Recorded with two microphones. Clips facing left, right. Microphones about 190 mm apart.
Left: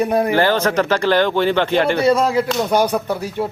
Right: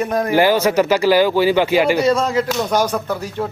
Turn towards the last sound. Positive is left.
turn(degrees=10)  # may be behind; listen again after turning